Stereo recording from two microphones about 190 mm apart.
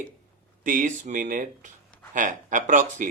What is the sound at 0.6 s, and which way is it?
Speech, 45° right (ahead or behind).